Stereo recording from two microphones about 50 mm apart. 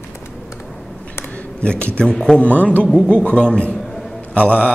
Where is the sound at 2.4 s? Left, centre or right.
Left.